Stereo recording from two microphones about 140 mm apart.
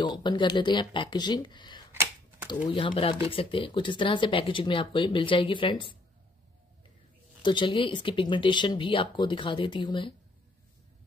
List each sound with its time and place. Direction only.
0.0 s speech: 30° left (ahead or behind)
1.9 s a sound: 15° right (ahead or behind)
2.7 s speech: 35° left (ahead or behind)
7.4 s speech: 35° left (ahead or behind)